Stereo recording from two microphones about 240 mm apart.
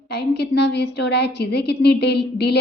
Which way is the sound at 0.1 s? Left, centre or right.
Left.